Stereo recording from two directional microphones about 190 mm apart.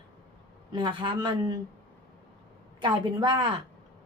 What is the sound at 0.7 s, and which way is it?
Speech, 25° right (ahead or behind).